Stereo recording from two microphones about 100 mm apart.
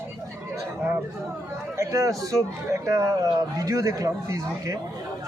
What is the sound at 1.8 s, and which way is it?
Speech, 35° right (ahead or behind).